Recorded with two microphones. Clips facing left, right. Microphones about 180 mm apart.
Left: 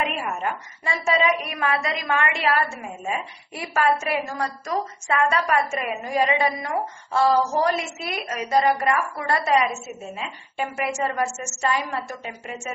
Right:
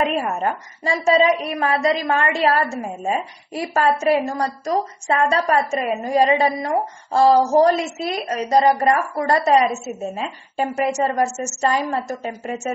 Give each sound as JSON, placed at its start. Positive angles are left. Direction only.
{"t": 0.0, "sound": "a woman's voice", "side_deg": -35}